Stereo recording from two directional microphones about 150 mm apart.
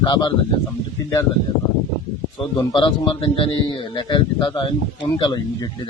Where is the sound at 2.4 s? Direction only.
30° left (ahead or behind).